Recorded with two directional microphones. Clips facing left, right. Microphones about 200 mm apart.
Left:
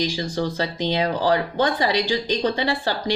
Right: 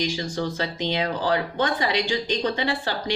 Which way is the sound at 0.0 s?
35° left (ahead or behind).